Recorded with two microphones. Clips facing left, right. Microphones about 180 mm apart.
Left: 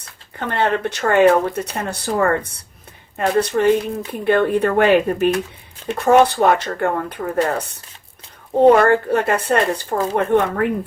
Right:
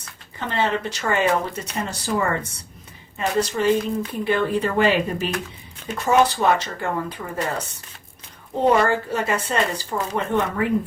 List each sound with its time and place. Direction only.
0.3 s speech: 55° left (ahead or behind)